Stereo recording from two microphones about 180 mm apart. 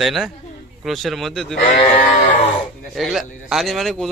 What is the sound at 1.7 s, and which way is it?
Sheep, 45° left (ahead or behind).